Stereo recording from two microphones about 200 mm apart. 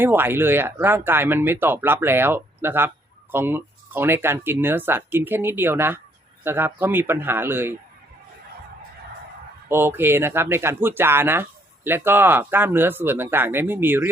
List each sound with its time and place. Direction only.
0.0 s speech: 10° right (ahead or behind)
9.6 s speech: 10° right (ahead or behind)